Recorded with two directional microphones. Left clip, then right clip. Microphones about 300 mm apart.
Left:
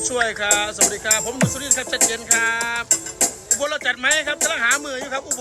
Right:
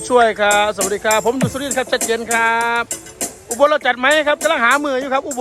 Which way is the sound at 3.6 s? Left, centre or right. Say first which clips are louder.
Right 10 dB; centre.